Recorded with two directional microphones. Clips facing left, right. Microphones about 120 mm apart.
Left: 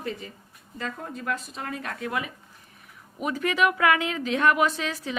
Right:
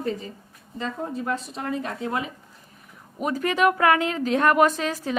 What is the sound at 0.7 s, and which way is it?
Speech, 25° right (ahead or behind).